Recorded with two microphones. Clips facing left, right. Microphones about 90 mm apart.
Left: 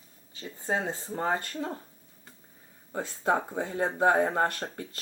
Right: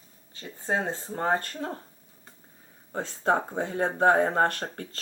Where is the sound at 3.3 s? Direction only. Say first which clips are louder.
Right 2 dB; 25° right (ahead or behind).